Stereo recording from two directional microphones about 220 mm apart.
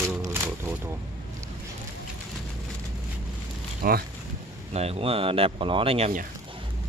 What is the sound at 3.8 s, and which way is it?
Speech, 40° right (ahead or behind).